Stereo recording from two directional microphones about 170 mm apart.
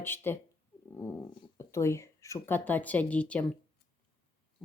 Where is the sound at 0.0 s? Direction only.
10° left (ahead or behind).